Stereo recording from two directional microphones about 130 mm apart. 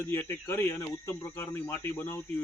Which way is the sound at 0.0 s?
20° left (ahead or behind).